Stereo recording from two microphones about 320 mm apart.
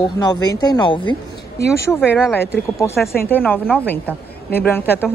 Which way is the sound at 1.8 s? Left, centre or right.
Centre.